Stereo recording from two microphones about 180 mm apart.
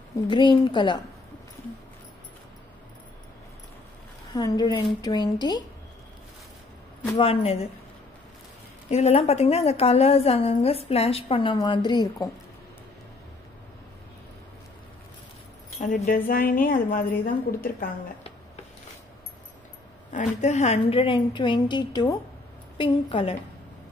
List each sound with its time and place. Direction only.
0.3 s a woman's voice: 25° left (ahead or behind)
4.3 s a woman's voice: 20° left (ahead or behind)
7.2 s a woman's voice: 35° left (ahead or behind)
8.9 s a woman's voice: 35° left (ahead or behind)
15.8 s a woman's voice: 45° left (ahead or behind)
20.1 s a woman's voice: 40° left (ahead or behind)